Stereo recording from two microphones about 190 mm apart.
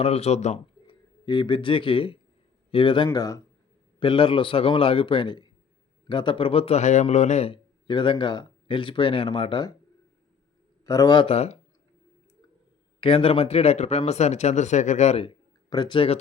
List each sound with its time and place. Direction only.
0.0 s a man's voice: 30° left (ahead or behind)
1.2 s a man's voice: 25° left (ahead or behind)
10.8 s a man's voice: 20° left (ahead or behind)
13.0 s speech: 30° left (ahead or behind)
15.7 s a man's voice: 25° left (ahead or behind)